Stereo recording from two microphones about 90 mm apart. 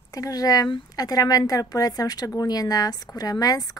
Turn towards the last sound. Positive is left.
turn(degrees=45)  # may be behind; listen again after turning